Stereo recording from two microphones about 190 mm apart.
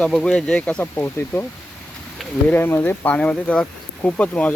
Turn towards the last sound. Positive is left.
turn(degrees=5)  # may be behind; listen again after turning